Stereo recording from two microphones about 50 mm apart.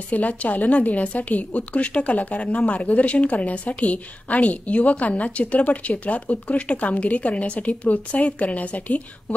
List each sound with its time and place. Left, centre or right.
0.1 s a woman's voice: left